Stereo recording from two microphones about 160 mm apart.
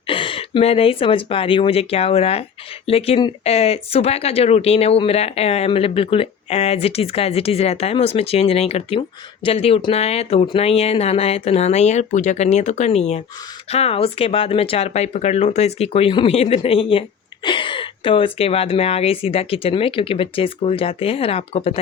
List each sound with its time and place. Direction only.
0.1 s speech: 35° left (ahead or behind)